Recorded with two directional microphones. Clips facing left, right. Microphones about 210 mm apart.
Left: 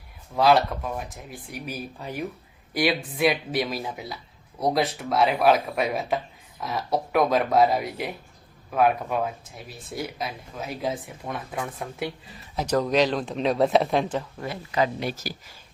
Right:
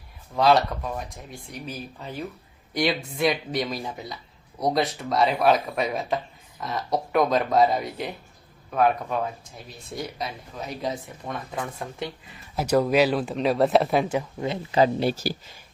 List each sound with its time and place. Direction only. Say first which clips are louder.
0.3 s speech: even; 5° left (ahead or behind)
12.5 s speech: right 2 dB; 10° right (ahead or behind); by 15.5 s 30° right (ahead or behind)